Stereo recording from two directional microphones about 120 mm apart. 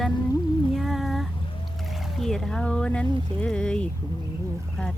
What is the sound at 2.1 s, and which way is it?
Speech, 5° left (ahead or behind).